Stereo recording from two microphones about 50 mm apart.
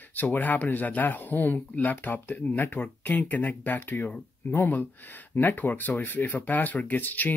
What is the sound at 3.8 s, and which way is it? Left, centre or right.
Speech, left.